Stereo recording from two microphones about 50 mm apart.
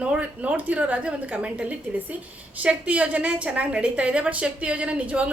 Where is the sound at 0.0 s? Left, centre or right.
Right.